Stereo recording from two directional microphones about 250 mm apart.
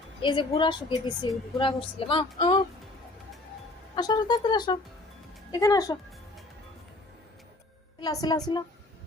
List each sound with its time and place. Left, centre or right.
0.2 s a woman's voice: centre
3.9 s speech: centre
8.0 s speech: centre